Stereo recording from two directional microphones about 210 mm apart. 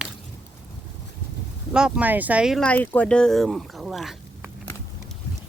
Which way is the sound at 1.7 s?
5° right (ahead or behind).